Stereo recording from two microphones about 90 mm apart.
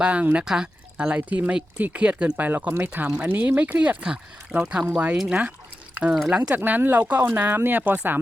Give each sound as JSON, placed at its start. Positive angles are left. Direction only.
{"t": 0.0, "sound": "speech", "side_deg": -15}
{"t": 5.9, "sound": "liquid", "side_deg": -15}
{"t": 6.5, "sound": "speech", "side_deg": -20}